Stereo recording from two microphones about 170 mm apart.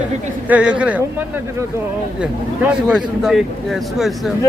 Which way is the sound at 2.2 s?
5° right (ahead or behind).